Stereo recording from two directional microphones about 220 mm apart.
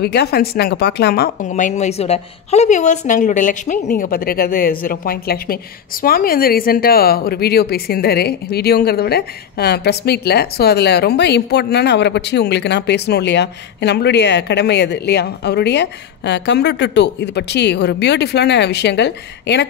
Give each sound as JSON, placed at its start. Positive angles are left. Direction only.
{"t": 0.0, "sound": "a woman's voice", "side_deg": 45}
{"t": 1.5, "sound": "a woman's voice", "side_deg": 30}